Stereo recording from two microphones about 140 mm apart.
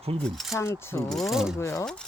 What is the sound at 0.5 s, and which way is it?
Speech, 20° left (ahead or behind).